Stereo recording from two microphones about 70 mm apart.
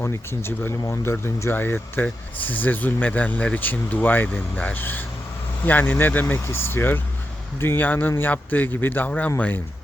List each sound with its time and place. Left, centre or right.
0.0 s speech: left